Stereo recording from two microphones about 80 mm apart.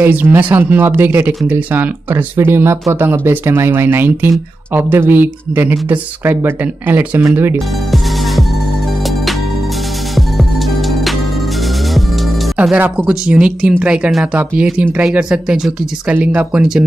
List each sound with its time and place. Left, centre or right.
0.0 s speech: right
12.9 s speech: centre
16.1 s speech: right